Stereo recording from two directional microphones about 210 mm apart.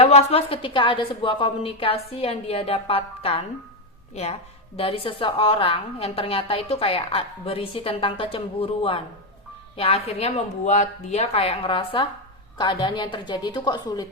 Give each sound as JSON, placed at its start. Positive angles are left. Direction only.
{"t": 0.0, "sound": "a woman's voice", "side_deg": 30}